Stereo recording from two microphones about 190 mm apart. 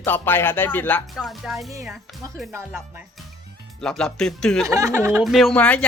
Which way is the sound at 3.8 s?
5° left (ahead or behind).